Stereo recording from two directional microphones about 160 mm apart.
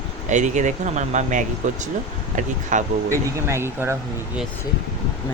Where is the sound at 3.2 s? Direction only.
20° right (ahead or behind).